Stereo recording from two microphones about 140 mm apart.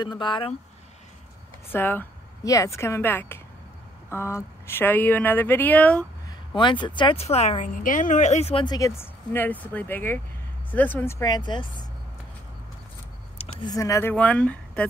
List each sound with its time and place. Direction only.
0.0 s speech: 35° left (ahead or behind)
1.7 s a woman's voice: 15° left (ahead or behind)
6.5 s speech: 35° left (ahead or behind)
7.6 s a woman's voice: 70° left (ahead or behind); by 8.6 s 50° left (ahead or behind)
8.6 s a woman's voice: 25° left (ahead or behind)
11.2 s speech: 30° left (ahead or behind)
13.7 s speech: 20° left (ahead or behind)
14.1 s speech: 10° left (ahead or behind)